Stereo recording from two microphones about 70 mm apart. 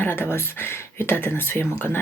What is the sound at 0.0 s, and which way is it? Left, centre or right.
Speech, left.